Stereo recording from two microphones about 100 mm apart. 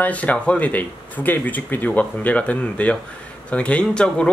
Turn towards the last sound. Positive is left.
turn(degrees=10)  # may be behind; listen again after turning